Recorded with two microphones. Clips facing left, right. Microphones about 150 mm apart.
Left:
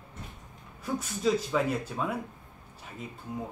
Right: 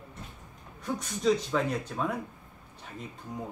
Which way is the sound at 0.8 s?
5° left (ahead or behind).